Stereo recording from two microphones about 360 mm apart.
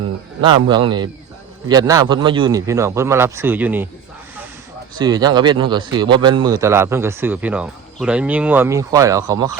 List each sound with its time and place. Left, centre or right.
0.4 s speech: centre
4.9 s speech: centre